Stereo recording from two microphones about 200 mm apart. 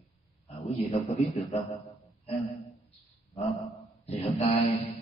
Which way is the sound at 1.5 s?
30° left (ahead or behind).